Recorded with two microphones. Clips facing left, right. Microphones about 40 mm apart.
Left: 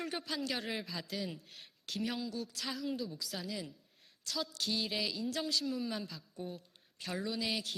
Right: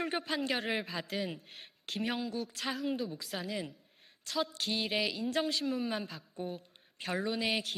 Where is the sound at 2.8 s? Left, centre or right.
Right.